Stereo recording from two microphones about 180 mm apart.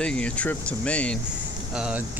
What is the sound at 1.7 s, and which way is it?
Speech, 5° right (ahead or behind).